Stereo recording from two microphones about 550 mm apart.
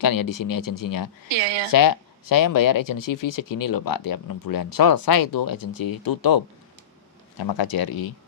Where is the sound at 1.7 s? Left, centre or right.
Left.